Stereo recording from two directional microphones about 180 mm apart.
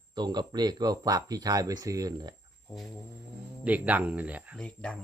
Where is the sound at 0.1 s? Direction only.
25° right (ahead or behind).